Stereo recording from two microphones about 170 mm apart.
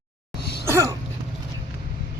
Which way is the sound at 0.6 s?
15° right (ahead or behind).